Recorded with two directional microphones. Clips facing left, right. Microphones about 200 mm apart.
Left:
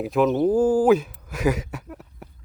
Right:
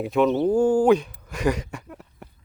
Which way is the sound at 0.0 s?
Centre (ahead or behind).